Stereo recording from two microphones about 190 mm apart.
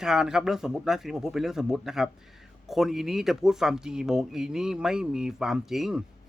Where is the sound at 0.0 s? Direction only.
5° right (ahead or behind).